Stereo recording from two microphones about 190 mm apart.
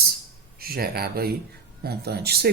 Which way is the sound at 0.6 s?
55° right (ahead or behind).